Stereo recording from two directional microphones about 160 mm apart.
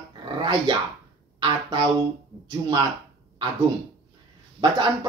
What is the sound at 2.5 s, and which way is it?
Speech, 25° right (ahead or behind).